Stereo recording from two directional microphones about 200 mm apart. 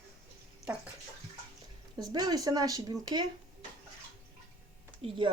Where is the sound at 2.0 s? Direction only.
20° right (ahead or behind).